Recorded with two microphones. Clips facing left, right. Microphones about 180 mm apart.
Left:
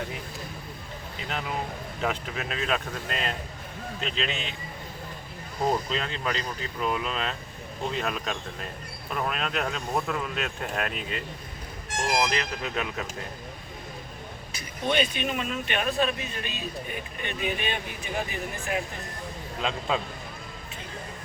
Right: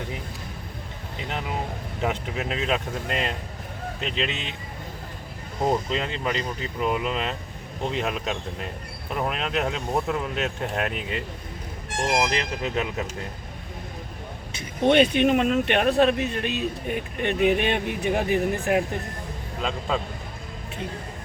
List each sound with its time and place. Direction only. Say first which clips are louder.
2.0 s speech: right 3 dB; 20° right (ahead or behind)
5.6 s speech: right 3 dB; 20° right (ahead or behind)
14.8 s speech: right 9 dB; 60° right (ahead or behind)